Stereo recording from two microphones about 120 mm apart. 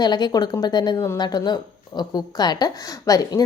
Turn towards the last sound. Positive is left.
turn(degrees=30)  # may be behind; listen again after turning